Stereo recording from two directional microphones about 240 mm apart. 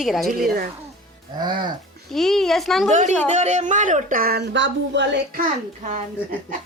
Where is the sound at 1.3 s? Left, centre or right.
Centre.